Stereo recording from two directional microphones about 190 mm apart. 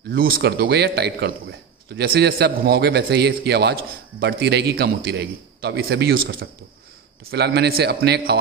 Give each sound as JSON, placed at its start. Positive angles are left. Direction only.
{"t": 0.1, "sound": "a man's voice", "side_deg": -50}